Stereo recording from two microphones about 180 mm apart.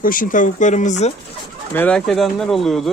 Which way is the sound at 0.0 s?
50° left (ahead or behind).